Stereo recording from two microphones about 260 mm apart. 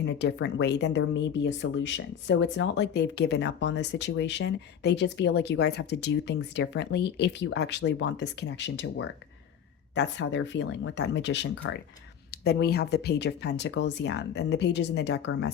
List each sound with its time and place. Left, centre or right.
0.0 s speech: left